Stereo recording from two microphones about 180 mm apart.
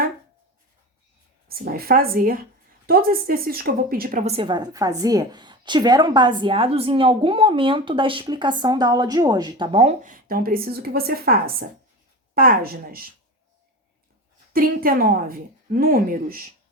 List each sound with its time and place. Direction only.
1.5 s a woman's voice: 55° right (ahead or behind)
4.3 s a woman's voice: 30° right (ahead or behind); by 13.1 s 55° right (ahead or behind)
14.5 s a woman's voice: 55° right (ahead or behind)